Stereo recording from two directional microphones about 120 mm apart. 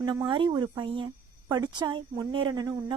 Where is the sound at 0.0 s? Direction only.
40° right (ahead or behind).